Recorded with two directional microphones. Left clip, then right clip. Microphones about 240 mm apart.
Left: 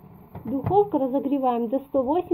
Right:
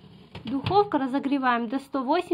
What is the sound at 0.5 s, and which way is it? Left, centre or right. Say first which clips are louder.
A woman's voice: left 1 dB; right.